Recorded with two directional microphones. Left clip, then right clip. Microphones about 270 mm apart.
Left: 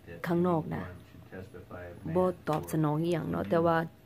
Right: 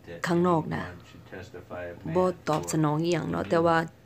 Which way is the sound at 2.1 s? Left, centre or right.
Centre.